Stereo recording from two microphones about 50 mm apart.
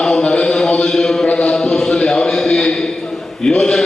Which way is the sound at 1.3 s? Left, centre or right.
Left.